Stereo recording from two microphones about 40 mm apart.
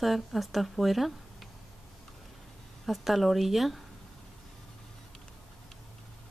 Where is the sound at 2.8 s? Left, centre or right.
Centre.